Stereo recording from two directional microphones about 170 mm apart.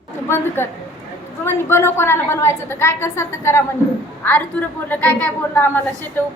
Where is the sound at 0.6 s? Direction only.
15° left (ahead or behind).